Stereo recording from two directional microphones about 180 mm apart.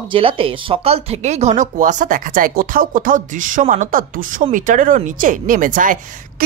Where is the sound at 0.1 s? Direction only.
30° right (ahead or behind).